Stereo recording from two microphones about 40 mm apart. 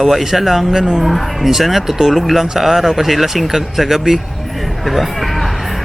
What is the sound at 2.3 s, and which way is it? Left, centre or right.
Speech, centre.